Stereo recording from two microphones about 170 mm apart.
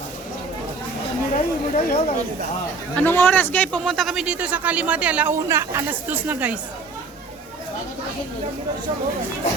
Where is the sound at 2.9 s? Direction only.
10° left (ahead or behind); by 6.6 s 10° right (ahead or behind).